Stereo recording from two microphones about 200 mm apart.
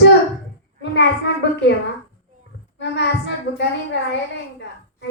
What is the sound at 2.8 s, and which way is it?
Child singing, 60° left (ahead or behind).